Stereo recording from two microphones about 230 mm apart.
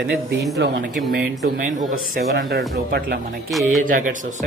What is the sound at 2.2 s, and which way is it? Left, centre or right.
A man's voice, right.